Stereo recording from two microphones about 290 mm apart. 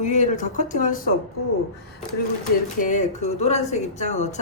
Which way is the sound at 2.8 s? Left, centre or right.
Left.